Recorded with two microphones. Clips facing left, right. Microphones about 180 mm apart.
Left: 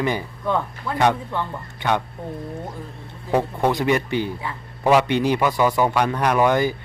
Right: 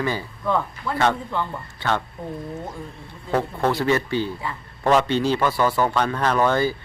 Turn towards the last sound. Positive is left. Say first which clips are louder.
# left 2 dB
turn(degrees=15)  # may be behind; listen again after turning